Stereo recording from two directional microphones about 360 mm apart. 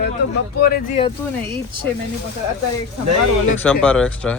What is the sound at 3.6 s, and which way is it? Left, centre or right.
Speech, centre.